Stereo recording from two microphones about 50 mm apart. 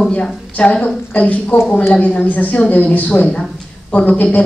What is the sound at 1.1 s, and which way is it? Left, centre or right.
A woman's voice, left.